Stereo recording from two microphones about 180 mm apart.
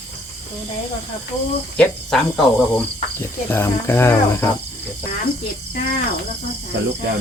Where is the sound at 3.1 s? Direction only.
15° left (ahead or behind).